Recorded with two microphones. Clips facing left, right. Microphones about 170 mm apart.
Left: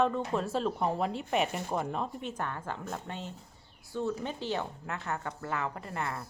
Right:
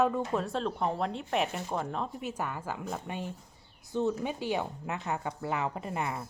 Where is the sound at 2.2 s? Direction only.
5° right (ahead or behind).